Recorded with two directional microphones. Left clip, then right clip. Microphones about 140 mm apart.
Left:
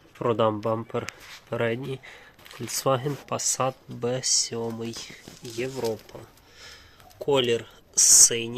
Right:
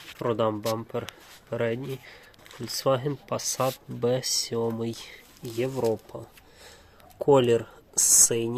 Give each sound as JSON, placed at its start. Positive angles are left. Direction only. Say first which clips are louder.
{"t": 0.2, "sound": "speech", "louder": "left 3 dB", "side_deg": 15}
{"t": 2.9, "sound": "speech", "louder": "even", "side_deg": 0}
{"t": 4.0, "sound": "speech", "louder": "even", "side_deg": -20}
{"t": 4.9, "sound": "speech", "louder": "even", "side_deg": -40}
{"t": 7.3, "sound": "speech", "louder": "right 3 dB", "side_deg": -65}